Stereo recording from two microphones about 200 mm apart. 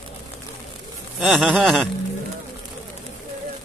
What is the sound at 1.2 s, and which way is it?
Speech, 5° right (ahead or behind).